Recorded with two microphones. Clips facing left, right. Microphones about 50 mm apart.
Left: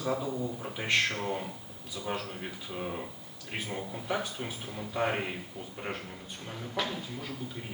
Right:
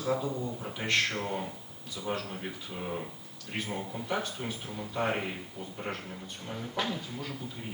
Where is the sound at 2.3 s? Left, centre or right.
Centre.